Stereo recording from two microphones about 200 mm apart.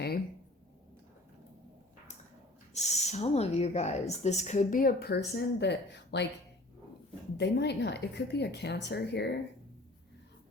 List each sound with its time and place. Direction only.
2.7 s speech: 35° left (ahead or behind); by 6.2 s 60° left (ahead or behind)
7.3 s a woman's voice: 60° left (ahead or behind)